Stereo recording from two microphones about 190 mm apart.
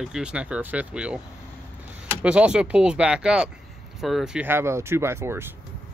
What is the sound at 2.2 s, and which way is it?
Speech, 5° right (ahead or behind).